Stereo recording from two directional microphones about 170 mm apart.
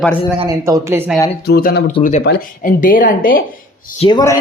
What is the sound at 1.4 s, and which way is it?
Speech, 70° left (ahead or behind).